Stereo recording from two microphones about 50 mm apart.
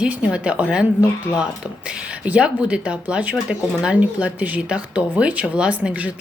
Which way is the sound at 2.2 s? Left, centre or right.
Right.